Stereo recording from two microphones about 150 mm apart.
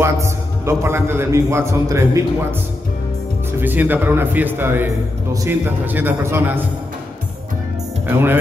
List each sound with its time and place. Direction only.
0.0 s a man's voice: 20° right (ahead or behind)
3.5 s speech: 10° right (ahead or behind)
8.1 s speech: 15° right (ahead or behind)